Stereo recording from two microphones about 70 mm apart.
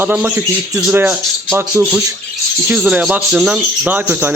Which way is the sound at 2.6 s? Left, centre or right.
Centre.